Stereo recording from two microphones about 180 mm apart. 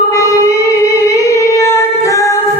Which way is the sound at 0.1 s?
15° left (ahead or behind).